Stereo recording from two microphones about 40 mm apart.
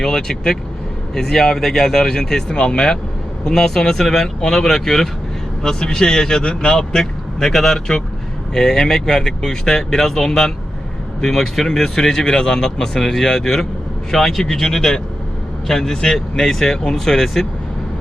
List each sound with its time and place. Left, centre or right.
0.0 s speech: centre
6.7 s speech: centre